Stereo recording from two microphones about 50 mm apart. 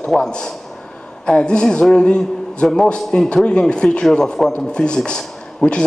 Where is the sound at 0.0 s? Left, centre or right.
Centre.